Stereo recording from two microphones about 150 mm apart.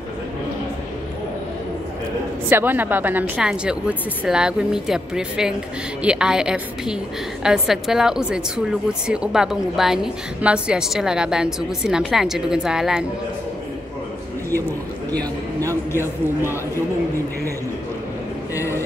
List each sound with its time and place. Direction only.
2.5 s a woman's voice: 10° right (ahead or behind)
15.7 s a man's voice: 15° left (ahead or behind)
18.5 s a sound: 20° left (ahead or behind)